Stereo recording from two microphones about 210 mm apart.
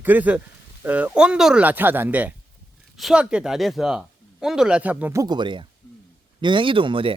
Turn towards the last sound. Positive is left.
turn(degrees=-25)  # may be behind; listen again after turning